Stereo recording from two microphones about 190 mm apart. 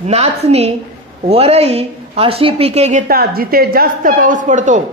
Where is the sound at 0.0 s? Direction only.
35° right (ahead or behind).